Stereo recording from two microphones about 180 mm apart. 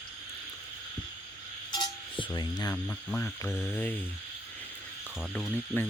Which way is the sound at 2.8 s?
5° left (ahead or behind).